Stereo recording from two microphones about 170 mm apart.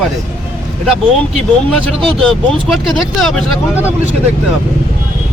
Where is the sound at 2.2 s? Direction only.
5° left (ahead or behind).